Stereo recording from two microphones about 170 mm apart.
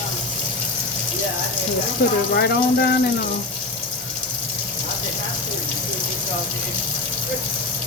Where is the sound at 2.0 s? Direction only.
60° left (ahead or behind).